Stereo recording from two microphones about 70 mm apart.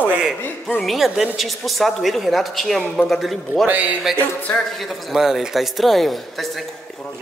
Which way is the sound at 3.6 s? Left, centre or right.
Right.